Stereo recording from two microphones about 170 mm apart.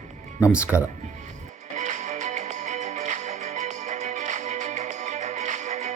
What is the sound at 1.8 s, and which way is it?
Music, 45° right (ahead or behind).